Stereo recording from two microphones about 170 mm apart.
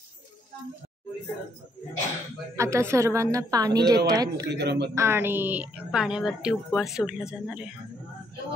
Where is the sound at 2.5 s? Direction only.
15° right (ahead or behind).